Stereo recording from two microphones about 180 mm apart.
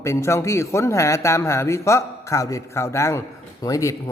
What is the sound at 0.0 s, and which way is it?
A man's voice, 15° left (ahead or behind).